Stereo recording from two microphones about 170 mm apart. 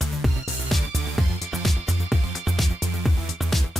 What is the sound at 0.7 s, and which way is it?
Music, centre (ahead or behind).